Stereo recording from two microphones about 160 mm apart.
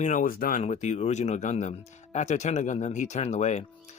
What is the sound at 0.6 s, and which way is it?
Speech, 45° left (ahead or behind).